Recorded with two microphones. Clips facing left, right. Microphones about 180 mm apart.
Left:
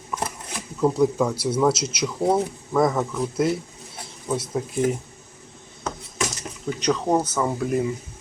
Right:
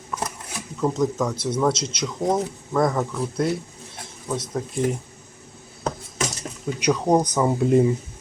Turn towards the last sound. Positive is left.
turn(degrees=-25)  # may be behind; listen again after turning